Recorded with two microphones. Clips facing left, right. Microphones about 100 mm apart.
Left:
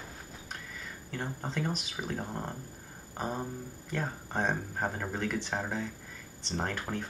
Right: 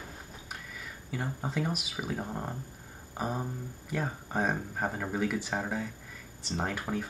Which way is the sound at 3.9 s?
5° right (ahead or behind).